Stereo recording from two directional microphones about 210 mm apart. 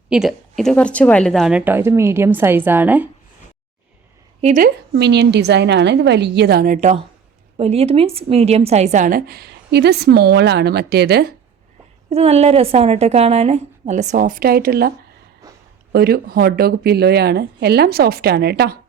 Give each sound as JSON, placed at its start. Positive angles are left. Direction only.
{"t": 0.1, "sound": "a woman's voice", "side_deg": 0}
{"t": 4.4, "sound": "a woman's voice", "side_deg": -35}
{"t": 4.9, "sound": "a woman's voice", "side_deg": -55}
{"t": 12.1, "sound": "a woman's voice", "side_deg": -30}
{"t": 15.4, "sound": "a sound", "side_deg": -15}
{"t": 15.9, "sound": "a woman's voice", "side_deg": -45}